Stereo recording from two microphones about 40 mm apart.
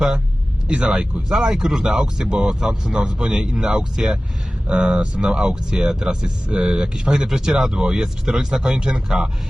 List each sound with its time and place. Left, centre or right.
0.7 s speech: right
1.3 s speech: centre
4.7 s speech: right
5.1 s speech: centre